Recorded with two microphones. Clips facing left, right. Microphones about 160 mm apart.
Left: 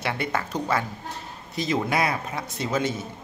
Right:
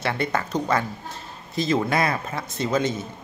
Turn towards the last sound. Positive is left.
turn(degrees=10)  # may be behind; listen again after turning